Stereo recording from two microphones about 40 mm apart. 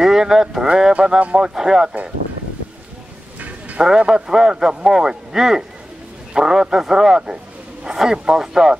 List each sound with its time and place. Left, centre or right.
0.0 s speech: centre
3.3 s a sound: right
3.8 s speech: centre